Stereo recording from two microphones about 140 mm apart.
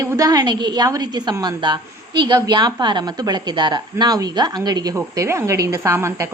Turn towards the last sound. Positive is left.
turn(degrees=-20)  # may be behind; listen again after turning